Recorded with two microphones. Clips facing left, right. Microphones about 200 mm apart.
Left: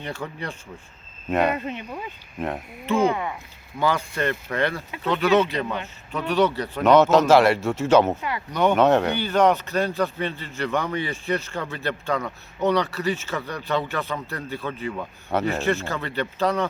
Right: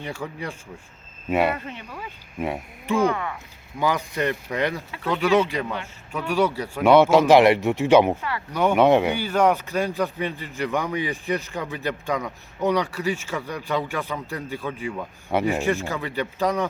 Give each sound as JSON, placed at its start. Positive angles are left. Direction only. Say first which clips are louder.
{"t": 0.0, "sound": "speech", "louder": "even", "side_deg": -10}
{"t": 1.5, "sound": "speech", "louder": "left 5 dB", "side_deg": 20}
{"t": 2.4, "sound": "speech", "louder": "right 1 dB", "side_deg": -10}
{"t": 3.1, "sound": "speech", "louder": "left 1 dB", "side_deg": 20}
{"t": 3.8, "sound": "speech", "louder": "even", "side_deg": -15}